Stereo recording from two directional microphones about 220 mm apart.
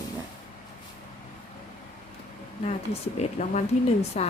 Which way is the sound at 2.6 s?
30° left (ahead or behind).